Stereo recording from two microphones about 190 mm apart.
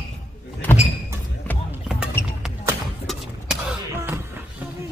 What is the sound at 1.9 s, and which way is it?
Music, 5° right (ahead or behind).